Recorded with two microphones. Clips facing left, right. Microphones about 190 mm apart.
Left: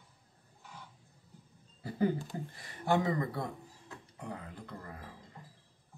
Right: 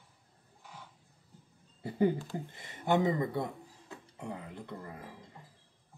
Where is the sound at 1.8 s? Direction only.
25° right (ahead or behind).